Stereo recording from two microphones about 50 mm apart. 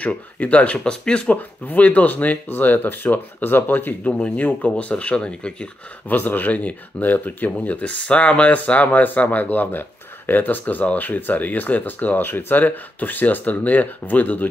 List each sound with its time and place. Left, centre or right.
0.4 s speech: left
1.3 s speech: left
6.0 s speech: left